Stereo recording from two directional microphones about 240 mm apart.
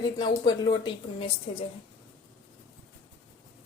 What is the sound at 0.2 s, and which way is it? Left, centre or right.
A woman's voice, centre.